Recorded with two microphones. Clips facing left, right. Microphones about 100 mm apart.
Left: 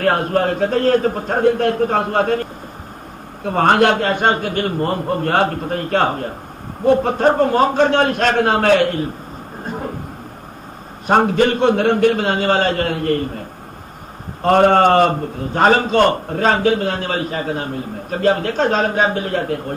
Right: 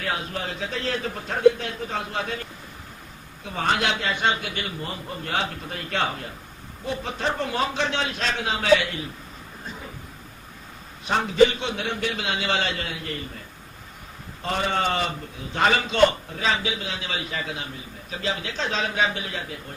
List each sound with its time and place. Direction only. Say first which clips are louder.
0.0 s a man's voice: left 13 dB; 55° left (ahead or behind)
3.4 s a man's voice: left 11 dB; 55° left (ahead or behind)
9.7 s a sound: left 13 dB; 55° left (ahead or behind)
11.1 s a man's voice: left 5 dB; 50° left (ahead or behind)